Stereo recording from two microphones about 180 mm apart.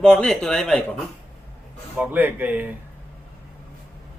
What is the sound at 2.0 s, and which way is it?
Speech, 10° right (ahead or behind).